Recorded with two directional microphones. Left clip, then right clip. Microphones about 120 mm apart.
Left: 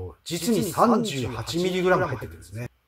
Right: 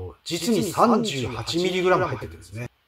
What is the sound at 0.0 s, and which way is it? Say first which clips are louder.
Speech: right 2 dB; 15° right (ahead or behind).